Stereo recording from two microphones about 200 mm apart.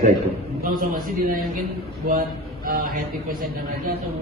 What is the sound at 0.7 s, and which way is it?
Speech, 45° right (ahead or behind).